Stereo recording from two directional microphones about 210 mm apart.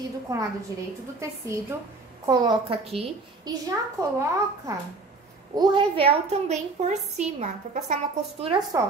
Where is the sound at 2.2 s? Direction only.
20° right (ahead or behind).